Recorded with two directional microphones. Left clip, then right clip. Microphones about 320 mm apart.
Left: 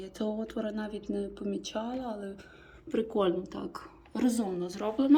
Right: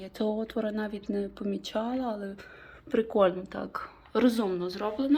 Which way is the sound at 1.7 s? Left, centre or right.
Right.